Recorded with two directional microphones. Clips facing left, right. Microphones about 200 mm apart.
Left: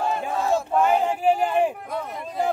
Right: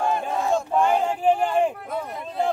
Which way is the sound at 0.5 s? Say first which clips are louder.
Left 1 dB; 5° left (ahead or behind).